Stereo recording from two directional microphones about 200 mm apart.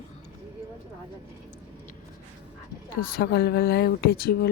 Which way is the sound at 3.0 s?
50° left (ahead or behind).